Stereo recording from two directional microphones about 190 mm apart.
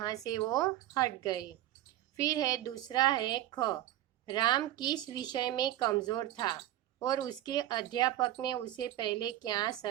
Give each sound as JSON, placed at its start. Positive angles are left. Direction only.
{"t": 0.0, "sound": "speech", "side_deg": 20}